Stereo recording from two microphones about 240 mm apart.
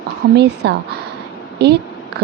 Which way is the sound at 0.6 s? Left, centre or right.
Right.